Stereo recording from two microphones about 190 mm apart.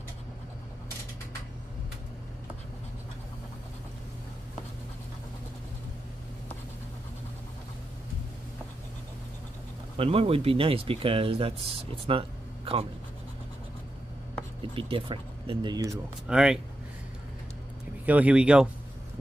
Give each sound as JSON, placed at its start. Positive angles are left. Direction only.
{"t": 9.9, "sound": "speech", "side_deg": -30}
{"t": 14.8, "sound": "speech", "side_deg": -30}
{"t": 16.3, "sound": "speech", "side_deg": -5}
{"t": 18.0, "sound": "speech", "side_deg": -10}